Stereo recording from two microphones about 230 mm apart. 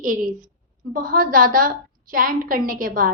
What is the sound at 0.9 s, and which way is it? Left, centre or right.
A woman's voice, right.